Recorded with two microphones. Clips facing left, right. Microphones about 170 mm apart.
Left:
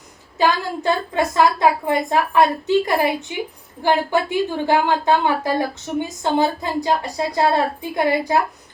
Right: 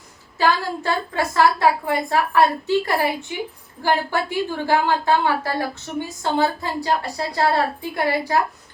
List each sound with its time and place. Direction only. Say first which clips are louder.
0.3 s a woman's voice: left 1 dB; 20° left (ahead or behind)